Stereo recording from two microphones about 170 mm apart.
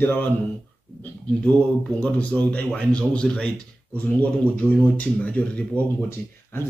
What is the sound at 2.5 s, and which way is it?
Speech, 10° left (ahead or behind).